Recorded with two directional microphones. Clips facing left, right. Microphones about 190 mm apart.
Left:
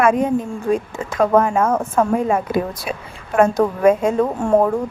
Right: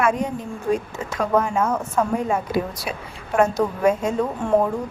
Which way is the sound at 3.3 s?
55° left (ahead or behind).